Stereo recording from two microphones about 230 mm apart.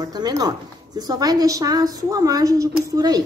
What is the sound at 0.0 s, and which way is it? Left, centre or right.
A woman's voice, centre.